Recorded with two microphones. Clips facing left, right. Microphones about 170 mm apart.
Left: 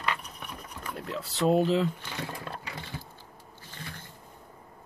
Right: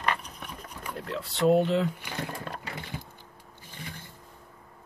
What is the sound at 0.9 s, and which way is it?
Speech, centre (ahead or behind).